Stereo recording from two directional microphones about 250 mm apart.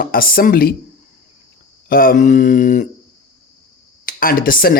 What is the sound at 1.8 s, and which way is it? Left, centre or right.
Speech, left.